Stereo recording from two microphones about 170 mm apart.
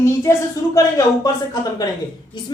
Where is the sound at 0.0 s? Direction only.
15° left (ahead or behind).